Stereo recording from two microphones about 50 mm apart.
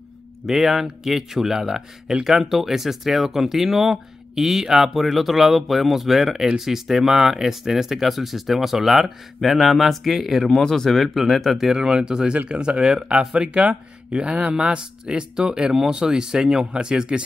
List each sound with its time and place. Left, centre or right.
0.5 s speech: centre
10.6 s speech: centre
11.8 s speech: centre